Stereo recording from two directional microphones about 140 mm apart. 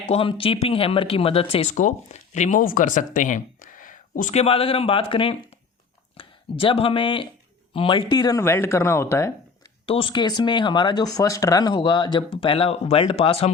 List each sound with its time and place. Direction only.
0.1 s speech: 40° left (ahead or behind); by 4.4 s 70° left (ahead or behind)
4.4 s speech: 45° left (ahead or behind); by 9.3 s 20° left (ahead or behind)
9.8 s speech: 40° left (ahead or behind)